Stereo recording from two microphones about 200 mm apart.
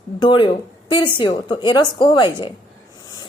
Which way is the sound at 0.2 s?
25° left (ahead or behind).